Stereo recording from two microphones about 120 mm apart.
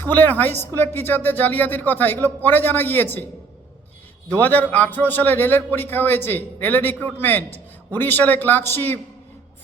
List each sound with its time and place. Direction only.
0.0 s a man's voice: 15° left (ahead or behind)
4.3 s a man's voice: 15° left (ahead or behind)